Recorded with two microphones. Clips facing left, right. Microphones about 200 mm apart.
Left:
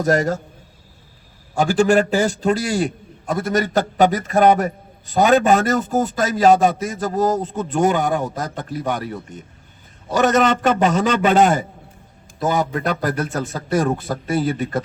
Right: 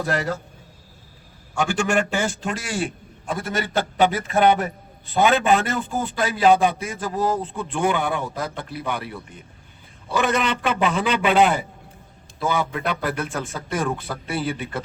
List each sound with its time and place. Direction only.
0.0 s a man's voice: 45° left (ahead or behind)
1.5 s a man's voice: 35° left (ahead or behind)